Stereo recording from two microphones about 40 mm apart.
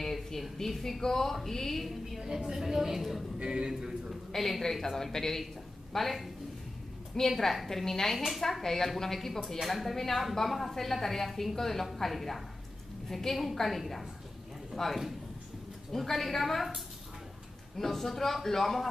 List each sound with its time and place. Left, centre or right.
0.0 s speech: centre
2.2 s a woman's voice: centre
3.4 s a man's voice: centre
4.3 s a woman's voice: centre